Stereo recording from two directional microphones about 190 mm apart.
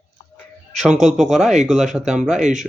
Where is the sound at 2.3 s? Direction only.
40° right (ahead or behind).